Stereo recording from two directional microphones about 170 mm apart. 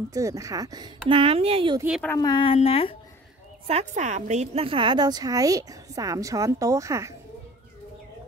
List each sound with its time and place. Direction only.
0.1 s a woman's voice: 20° right (ahead or behind)
2.1 s speech: 25° left (ahead or behind)
3.6 s a woman's voice: 40° right (ahead or behind); by 7.2 s 20° right (ahead or behind)